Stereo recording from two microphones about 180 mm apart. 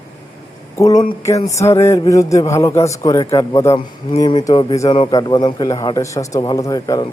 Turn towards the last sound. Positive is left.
turn(degrees=20)  # may be behind; listen again after turning